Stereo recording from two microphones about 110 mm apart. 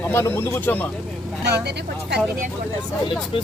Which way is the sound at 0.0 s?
20° left (ahead or behind).